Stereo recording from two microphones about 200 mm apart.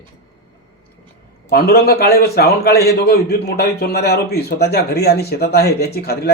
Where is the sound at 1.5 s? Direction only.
50° left (ahead or behind).